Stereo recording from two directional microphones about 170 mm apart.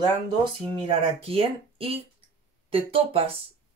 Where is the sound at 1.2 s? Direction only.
35° right (ahead or behind).